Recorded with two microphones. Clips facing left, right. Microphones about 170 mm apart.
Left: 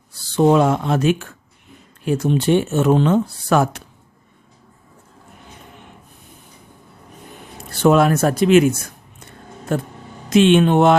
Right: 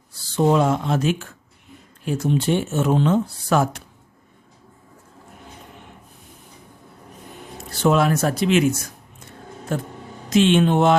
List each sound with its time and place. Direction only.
0.1 s speech: 70° left (ahead or behind)
7.7 s speech: 55° left (ahead or behind)